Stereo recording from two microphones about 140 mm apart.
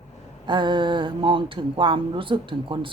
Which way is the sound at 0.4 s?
35° right (ahead or behind).